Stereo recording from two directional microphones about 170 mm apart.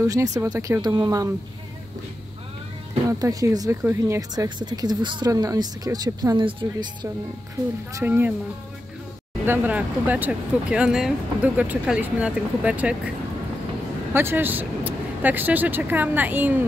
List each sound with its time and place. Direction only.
0.0 s speech: 20° right (ahead or behind)
3.1 s speech: 20° right (ahead or behind)
7.9 s speech: 10° right (ahead or behind)
9.5 s speech: 10° right (ahead or behind)
14.1 s speech: 10° right (ahead or behind)